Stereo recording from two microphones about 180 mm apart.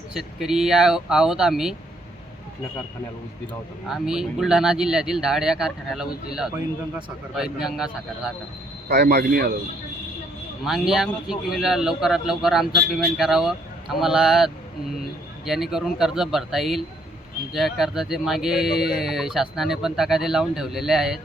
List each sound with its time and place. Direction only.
0.1 s speech: 5° right (ahead or behind)
3.8 s speech: 5° right (ahead or behind)
8.9 s speech: 70° right (ahead or behind)
10.6 s speech: centre (ahead or behind)